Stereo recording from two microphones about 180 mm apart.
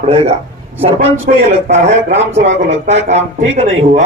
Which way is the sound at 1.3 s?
50° right (ahead or behind).